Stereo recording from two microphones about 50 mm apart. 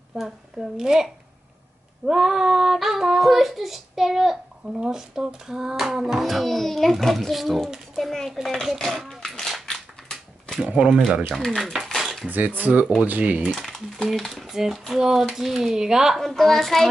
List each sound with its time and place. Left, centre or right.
0.2 s a child's voice: centre
9.2 s dog: centre
9.7 s typewriter: centre
10.6 s speech: right
11.4 s a child's voice: centre
12.3 s speech: right
13.6 s a child's voice: centre
14.5 s speech: centre
16.2 s a child's voice: centre